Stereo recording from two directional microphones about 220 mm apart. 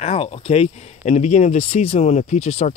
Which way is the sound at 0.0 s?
30° left (ahead or behind).